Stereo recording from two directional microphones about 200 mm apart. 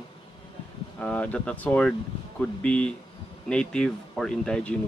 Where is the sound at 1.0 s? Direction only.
10° left (ahead or behind).